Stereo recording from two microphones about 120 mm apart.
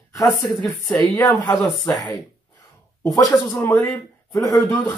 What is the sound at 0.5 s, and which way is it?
Speech, centre (ahead or behind).